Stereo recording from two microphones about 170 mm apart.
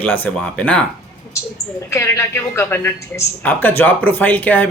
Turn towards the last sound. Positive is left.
turn(degrees=10)  # may be behind; listen again after turning